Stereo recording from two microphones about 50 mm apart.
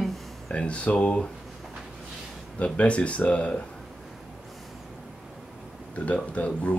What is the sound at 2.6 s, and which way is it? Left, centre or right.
Speech, left.